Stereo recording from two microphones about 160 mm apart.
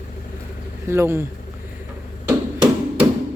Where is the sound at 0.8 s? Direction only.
15° right (ahead or behind).